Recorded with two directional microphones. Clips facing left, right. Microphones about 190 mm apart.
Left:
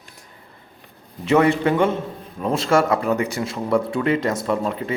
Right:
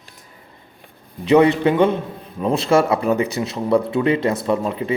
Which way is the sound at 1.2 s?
20° right (ahead or behind).